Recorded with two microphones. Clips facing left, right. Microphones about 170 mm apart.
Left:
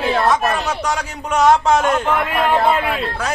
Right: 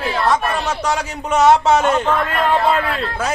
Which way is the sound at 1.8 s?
10° left (ahead or behind).